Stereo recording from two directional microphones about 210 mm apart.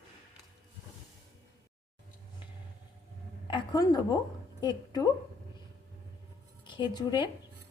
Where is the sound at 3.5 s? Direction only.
20° left (ahead or behind).